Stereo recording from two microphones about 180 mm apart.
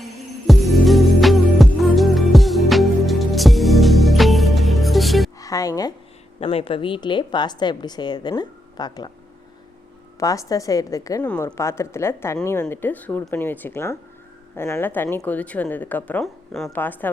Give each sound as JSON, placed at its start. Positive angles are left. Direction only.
{"t": 0.0, "sound": "music", "side_deg": 0}
{"t": 5.4, "sound": "music", "side_deg": 20}
{"t": 6.4, "sound": "a woman's voice", "side_deg": 35}
{"t": 10.2, "sound": "a woman's voice", "side_deg": 20}